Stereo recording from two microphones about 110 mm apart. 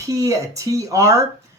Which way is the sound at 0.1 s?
30° right (ahead or behind).